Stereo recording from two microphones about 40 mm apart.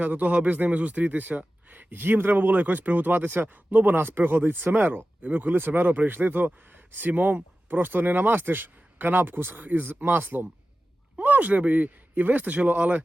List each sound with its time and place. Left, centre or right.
0.0 s speech: right
11.2 s speech: right
12.5 s speech: right